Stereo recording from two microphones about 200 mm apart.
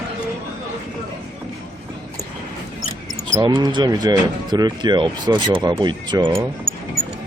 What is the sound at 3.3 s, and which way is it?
Speech, 20° right (ahead or behind).